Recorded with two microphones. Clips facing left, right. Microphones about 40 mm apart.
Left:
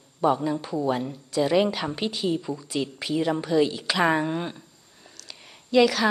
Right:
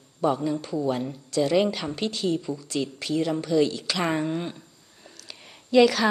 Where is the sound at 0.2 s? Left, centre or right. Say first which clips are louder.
Left 1 dB; centre.